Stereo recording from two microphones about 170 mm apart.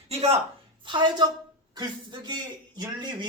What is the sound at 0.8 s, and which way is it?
Speech, 25° right (ahead or behind).